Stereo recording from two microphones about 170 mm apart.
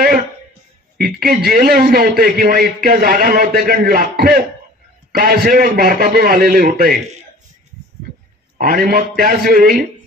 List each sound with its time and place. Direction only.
0.9 s a man's voice: 60° right (ahead or behind)
8.5 s a man's voice: 60° right (ahead or behind)